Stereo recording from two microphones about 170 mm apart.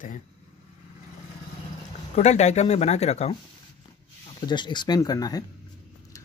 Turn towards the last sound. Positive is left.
turn(degrees=20)  # may be behind; listen again after turning